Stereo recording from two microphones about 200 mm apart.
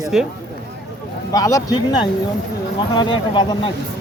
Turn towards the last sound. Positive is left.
turn(degrees=25)  # may be behind; listen again after turning